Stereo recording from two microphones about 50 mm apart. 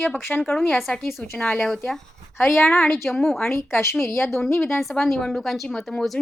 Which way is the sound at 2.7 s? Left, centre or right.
Left.